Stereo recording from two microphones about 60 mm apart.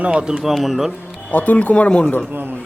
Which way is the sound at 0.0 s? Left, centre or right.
Centre.